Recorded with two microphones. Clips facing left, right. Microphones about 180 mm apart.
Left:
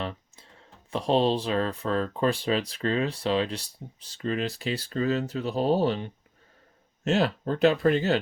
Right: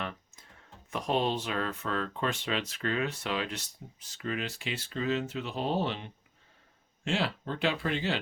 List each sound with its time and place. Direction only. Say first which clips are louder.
0.9 s speech: left 6 dB; 30° left (ahead or behind)